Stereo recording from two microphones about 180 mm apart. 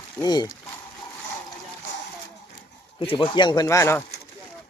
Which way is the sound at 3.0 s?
30° left (ahead or behind).